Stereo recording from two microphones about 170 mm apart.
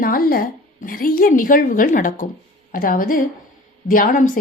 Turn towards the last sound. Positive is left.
turn(degrees=50)  # may be behind; listen again after turning